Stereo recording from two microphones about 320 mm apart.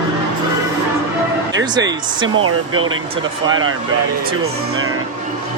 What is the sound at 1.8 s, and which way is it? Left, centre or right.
Speech, right.